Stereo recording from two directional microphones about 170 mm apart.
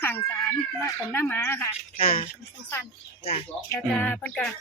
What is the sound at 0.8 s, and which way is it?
Speech, 15° left (ahead or behind).